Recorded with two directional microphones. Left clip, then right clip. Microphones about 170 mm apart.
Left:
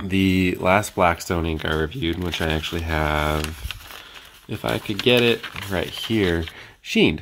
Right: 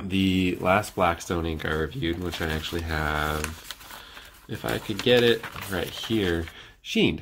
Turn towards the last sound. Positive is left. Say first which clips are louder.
# left 5 dB
turn(degrees=30)  # may be behind; listen again after turning